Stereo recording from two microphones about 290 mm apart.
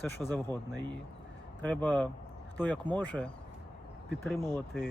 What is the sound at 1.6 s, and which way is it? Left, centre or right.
Speech, centre.